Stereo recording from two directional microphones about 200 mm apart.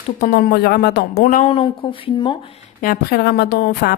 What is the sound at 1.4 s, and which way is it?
A woman's voice, 30° left (ahead or behind).